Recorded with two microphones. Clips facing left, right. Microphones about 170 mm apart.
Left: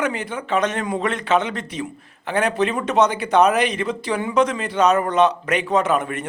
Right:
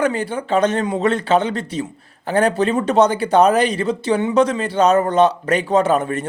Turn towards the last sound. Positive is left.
turn(degrees=-30)  # may be behind; listen again after turning